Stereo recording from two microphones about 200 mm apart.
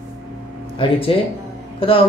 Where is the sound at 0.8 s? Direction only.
25° left (ahead or behind).